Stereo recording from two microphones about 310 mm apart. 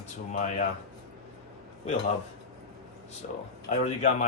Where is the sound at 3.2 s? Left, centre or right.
Left.